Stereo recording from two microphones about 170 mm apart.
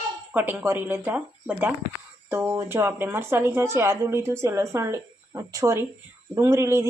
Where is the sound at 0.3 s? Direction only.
10° right (ahead or behind).